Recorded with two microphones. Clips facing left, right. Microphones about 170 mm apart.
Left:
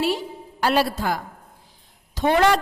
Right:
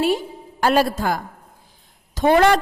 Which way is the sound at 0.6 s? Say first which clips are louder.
Right 3 dB; 45° right (ahead or behind).